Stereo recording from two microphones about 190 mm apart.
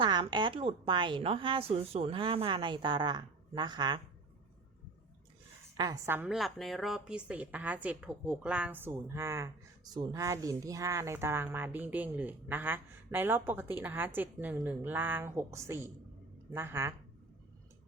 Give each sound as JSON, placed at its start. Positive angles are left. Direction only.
{"t": 0.0, "sound": "a woman's voice", "side_deg": -25}
{"t": 5.7, "sound": "a woman's voice", "side_deg": -20}